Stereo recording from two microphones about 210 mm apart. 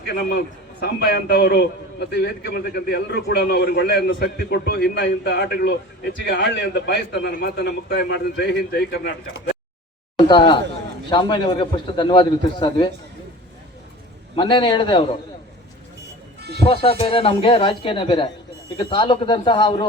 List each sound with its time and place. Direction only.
0.1 s a man's voice: 45° left (ahead or behind)
10.2 s a man's voice: 20° left (ahead or behind)
14.3 s a man's voice: 25° left (ahead or behind)
16.6 s a man's voice: 25° left (ahead or behind)